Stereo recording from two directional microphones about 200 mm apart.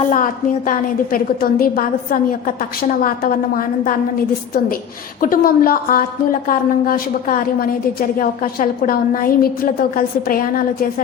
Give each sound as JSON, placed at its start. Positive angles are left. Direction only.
{"t": 0.1, "sound": "a woman's voice", "side_deg": 40}
{"t": 5.2, "sound": "a woman's voice", "side_deg": 45}